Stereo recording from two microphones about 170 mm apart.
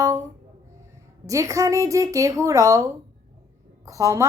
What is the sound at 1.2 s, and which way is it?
Speech, 20° right (ahead or behind).